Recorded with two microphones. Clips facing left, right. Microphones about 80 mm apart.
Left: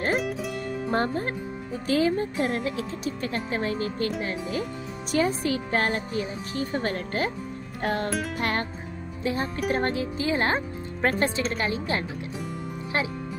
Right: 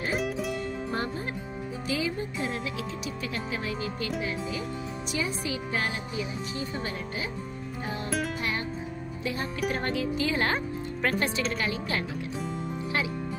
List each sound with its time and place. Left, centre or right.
0.2 s music: centre
0.9 s speech: left
7.8 s speech: left
8.4 s music: left
9.2 s speech: left